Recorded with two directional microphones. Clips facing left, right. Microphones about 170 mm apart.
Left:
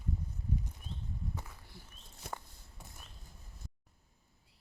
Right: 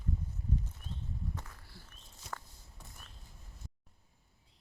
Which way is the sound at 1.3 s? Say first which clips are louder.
Left 1 dB; 15° left (ahead or behind).